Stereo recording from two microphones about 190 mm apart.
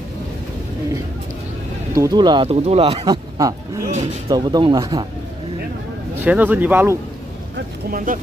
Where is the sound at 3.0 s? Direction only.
20° right (ahead or behind).